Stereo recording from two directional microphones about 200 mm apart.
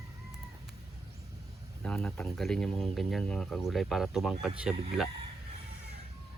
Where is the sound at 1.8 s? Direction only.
5° left (ahead or behind).